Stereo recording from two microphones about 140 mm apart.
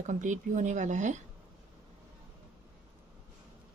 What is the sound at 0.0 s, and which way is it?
A woman's voice, 60° right (ahead or behind).